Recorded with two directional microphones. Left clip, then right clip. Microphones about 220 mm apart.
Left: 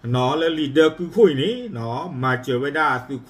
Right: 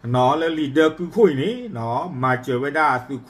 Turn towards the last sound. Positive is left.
turn(degrees=5)  # may be behind; listen again after turning